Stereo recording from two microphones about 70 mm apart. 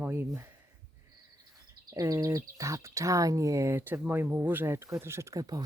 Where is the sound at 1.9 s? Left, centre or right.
Right.